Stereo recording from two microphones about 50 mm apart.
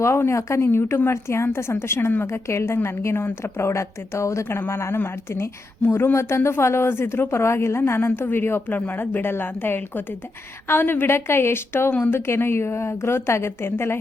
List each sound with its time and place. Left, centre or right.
0.0 s speech: left
0.6 s a woman's voice: left
4.7 s a woman's voice: left
6.1 s a woman's voice: left
8.7 s a woman's voice: left